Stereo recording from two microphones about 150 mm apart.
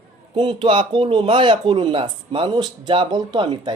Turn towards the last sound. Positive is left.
turn(degrees=-30)  # may be behind; listen again after turning